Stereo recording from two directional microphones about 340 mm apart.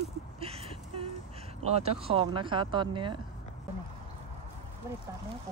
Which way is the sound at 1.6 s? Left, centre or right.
Centre.